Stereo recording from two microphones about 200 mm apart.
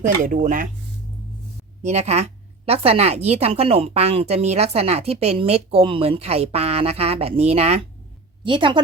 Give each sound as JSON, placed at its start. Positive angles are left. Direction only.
{"t": 0.0, "sound": "a woman's voice", "side_deg": -40}
{"t": 1.8, "sound": "a woman's voice", "side_deg": -35}